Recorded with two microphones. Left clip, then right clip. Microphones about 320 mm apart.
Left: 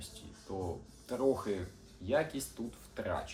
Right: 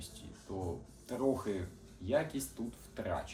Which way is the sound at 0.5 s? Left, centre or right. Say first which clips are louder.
Left 2 dB; centre.